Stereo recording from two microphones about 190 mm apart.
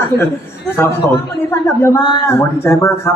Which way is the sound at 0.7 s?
10° left (ahead or behind).